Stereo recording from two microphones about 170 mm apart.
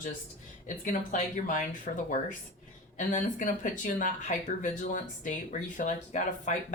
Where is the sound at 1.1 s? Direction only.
50° left (ahead or behind).